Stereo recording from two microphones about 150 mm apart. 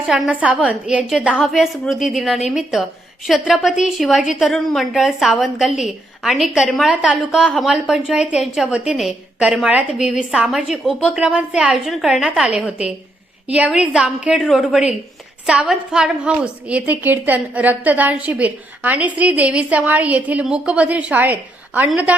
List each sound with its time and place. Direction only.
0.1 s a woman's voice: 5° right (ahead or behind)